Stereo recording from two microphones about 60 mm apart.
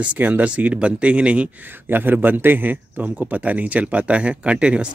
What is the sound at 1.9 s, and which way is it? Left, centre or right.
Speech, right.